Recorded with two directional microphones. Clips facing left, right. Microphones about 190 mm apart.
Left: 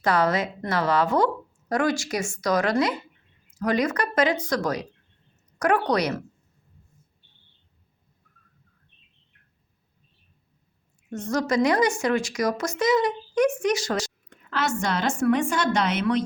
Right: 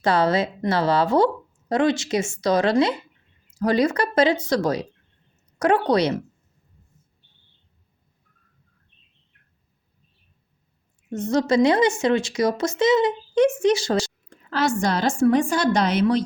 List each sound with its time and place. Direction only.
0.0 s a woman's voice: 30° right (ahead or behind)
11.1 s a woman's voice: 25° right (ahead or behind)